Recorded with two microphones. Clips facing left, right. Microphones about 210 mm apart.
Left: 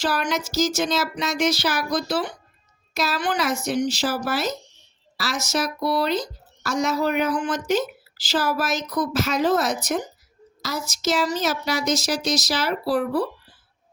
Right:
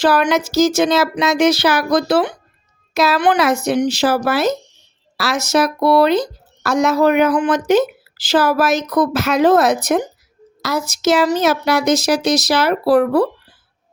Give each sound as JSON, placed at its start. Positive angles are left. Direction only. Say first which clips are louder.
{"t": 0.0, "sound": "a woman's voice", "louder": "right 9 dB", "side_deg": -75}